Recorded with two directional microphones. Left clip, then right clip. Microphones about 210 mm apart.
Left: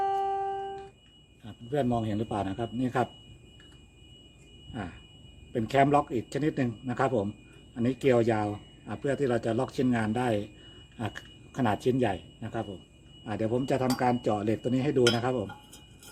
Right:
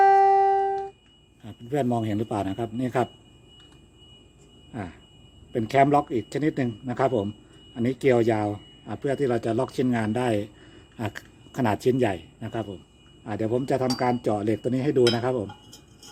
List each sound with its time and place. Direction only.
0.3 s music: 40° right (ahead or behind)
1.5 s a man's voice: 35° right (ahead or behind)
4.7 s a sound: 30° right (ahead or behind)
5.5 s speech: 25° right (ahead or behind)